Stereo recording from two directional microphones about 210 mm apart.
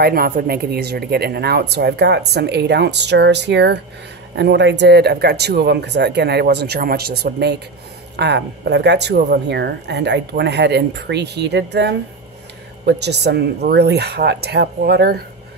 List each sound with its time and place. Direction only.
0.0 s speech: 45° right (ahead or behind)